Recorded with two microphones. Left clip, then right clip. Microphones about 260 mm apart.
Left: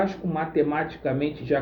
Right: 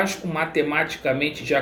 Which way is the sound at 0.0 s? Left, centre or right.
Centre.